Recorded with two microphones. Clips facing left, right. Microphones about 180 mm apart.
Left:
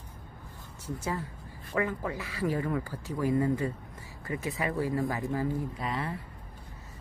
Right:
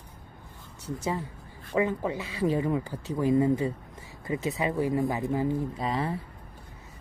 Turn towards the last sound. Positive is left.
turn(degrees=-20)  # may be behind; listen again after turning